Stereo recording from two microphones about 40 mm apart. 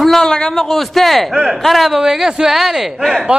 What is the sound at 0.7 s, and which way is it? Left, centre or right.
Speech, centre.